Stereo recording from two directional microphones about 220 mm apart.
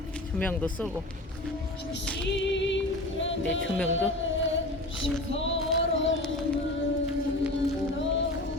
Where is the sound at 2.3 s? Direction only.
55° left (ahead or behind).